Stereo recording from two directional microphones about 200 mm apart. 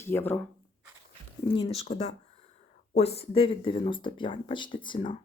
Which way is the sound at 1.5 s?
30° left (ahead or behind).